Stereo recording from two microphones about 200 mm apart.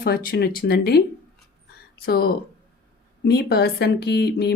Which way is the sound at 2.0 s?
50° left (ahead or behind).